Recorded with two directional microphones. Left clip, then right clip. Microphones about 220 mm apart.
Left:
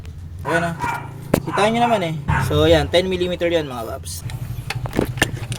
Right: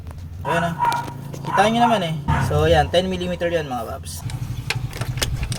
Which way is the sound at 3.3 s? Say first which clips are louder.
Left 2 dB; 25° left (ahead or behind).